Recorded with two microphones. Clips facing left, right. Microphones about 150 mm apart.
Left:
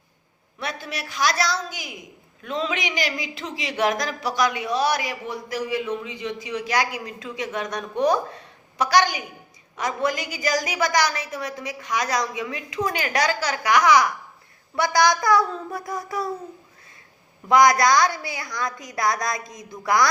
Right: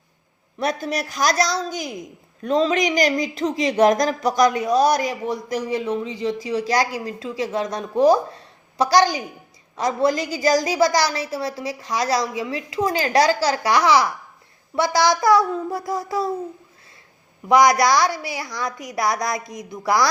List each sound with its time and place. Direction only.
0.6 s a woman's voice: 40° right (ahead or behind); by 16.3 s 25° right (ahead or behind)
17.5 s a woman's voice: 20° right (ahead or behind)